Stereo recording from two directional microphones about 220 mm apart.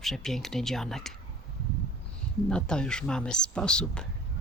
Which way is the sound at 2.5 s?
5° left (ahead or behind).